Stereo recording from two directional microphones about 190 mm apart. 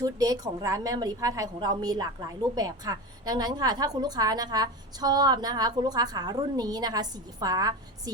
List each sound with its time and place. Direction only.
0.0 s a woman's voice: 20° right (ahead or behind)